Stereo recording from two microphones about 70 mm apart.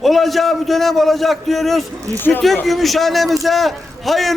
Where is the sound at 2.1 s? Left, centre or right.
Left.